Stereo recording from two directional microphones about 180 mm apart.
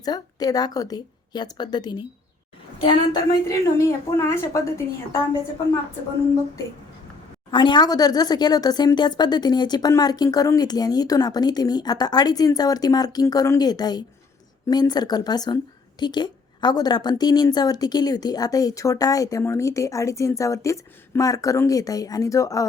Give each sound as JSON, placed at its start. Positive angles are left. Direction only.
{"t": 0.0, "sound": "a woman's voice", "side_deg": 20}
{"t": 7.5, "sound": "a woman's voice", "side_deg": 25}